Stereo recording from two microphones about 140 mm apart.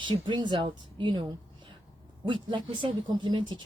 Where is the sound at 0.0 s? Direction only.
35° right (ahead or behind).